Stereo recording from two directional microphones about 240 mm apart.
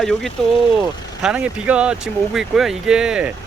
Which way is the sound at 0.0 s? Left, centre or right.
Centre.